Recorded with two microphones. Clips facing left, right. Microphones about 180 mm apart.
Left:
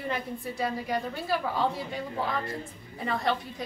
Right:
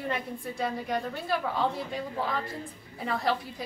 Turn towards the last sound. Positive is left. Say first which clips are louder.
# even
turn(degrees=0)  # may be behind; listen again after turning